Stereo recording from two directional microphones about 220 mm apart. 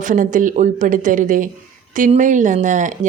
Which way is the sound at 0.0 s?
35° right (ahead or behind).